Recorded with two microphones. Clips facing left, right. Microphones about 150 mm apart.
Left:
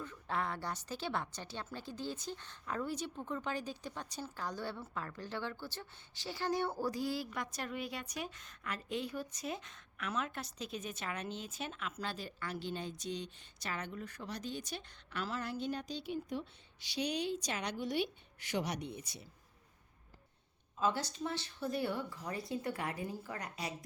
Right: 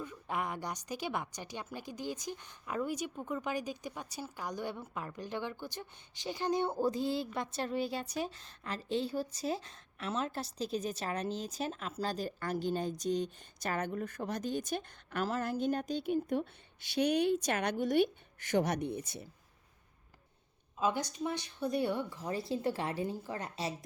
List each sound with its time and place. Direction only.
0.0 s a woman's voice: 15° right (ahead or behind); by 19.3 s 50° right (ahead or behind)
20.7 s speech: 15° right (ahead or behind)